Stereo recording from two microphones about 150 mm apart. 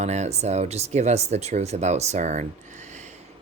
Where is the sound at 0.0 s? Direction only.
50° right (ahead or behind).